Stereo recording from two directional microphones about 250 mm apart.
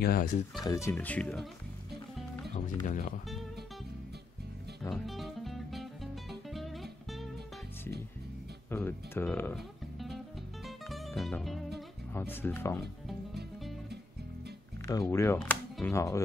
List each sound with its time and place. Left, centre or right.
0.0 s speech: left
0.7 s speech: centre
2.8 s speech: left
4.9 s music: centre
8.6 s speech: centre
10.9 s music: centre
12.1 s speech: centre
14.9 s speech: centre